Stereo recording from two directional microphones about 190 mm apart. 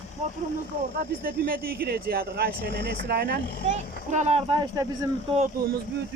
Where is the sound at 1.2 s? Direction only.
55° right (ahead or behind).